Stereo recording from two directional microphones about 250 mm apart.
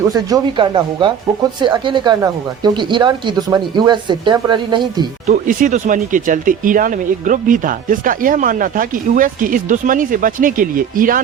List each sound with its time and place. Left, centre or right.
0.1 s speech: centre
5.3 s speech: right